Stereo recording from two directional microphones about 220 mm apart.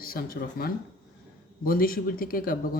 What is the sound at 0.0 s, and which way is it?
Speech, 40° left (ahead or behind).